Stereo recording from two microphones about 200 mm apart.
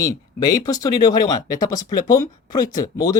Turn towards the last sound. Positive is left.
turn(degrees=20)  # may be behind; listen again after turning